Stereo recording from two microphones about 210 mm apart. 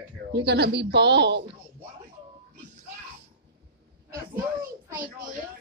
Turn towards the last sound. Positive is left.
turn(degrees=-10)  # may be behind; listen again after turning